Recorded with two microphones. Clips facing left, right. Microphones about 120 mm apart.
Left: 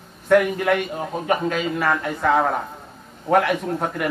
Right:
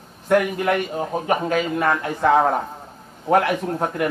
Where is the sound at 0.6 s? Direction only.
30° right (ahead or behind).